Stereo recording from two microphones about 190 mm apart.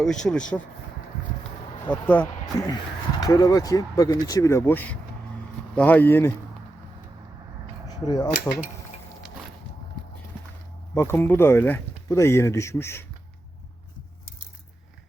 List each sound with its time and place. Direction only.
0.0 s speech: centre (ahead or behind)
1.9 s speech: 10° left (ahead or behind)
2.5 s speech: 20° left (ahead or behind)
8.0 s speech: 20° left (ahead or behind)
10.9 s speech: 10° left (ahead or behind)